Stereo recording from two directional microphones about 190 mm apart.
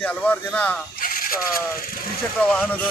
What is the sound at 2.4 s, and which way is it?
Speech, 5° left (ahead or behind).